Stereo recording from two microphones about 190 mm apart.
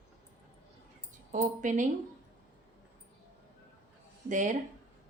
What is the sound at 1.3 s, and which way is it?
Speech, 40° right (ahead or behind).